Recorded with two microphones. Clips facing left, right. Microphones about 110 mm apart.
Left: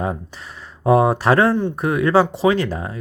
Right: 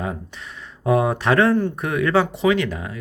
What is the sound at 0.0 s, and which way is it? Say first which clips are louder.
Speech: left 4 dB; 35° left (ahead or behind).